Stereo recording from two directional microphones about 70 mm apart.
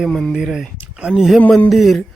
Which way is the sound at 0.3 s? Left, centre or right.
Centre.